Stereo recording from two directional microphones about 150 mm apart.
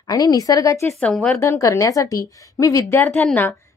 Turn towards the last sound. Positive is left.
turn(degrees=10)  # may be behind; listen again after turning